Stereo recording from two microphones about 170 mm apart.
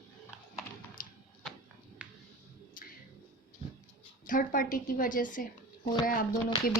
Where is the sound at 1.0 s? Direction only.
55° left (ahead or behind).